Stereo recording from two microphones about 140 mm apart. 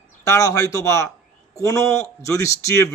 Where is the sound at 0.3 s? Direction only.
25° left (ahead or behind).